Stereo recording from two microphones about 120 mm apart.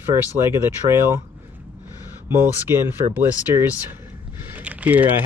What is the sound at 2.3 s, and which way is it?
Speech, 20° right (ahead or behind).